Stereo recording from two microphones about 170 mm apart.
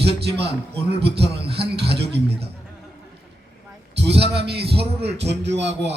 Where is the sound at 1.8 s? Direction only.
75° right (ahead or behind).